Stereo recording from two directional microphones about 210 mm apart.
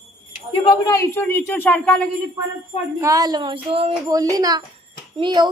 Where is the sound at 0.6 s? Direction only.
15° left (ahead or behind).